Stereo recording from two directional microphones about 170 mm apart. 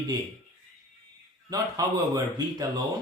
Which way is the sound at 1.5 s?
20° right (ahead or behind).